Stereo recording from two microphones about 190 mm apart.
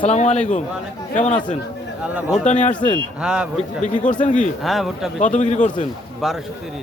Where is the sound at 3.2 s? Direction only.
5° right (ahead or behind).